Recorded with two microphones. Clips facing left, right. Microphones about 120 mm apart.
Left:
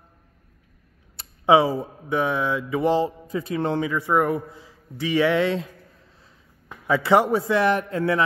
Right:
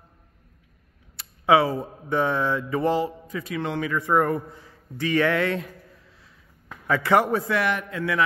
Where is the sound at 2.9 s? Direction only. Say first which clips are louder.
Left 5 dB; 30° left (ahead or behind).